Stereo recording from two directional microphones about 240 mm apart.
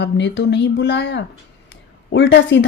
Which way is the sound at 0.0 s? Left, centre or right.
Left.